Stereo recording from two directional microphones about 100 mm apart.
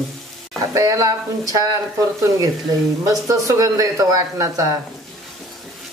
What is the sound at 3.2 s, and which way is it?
A woman's voice, 35° right (ahead or behind).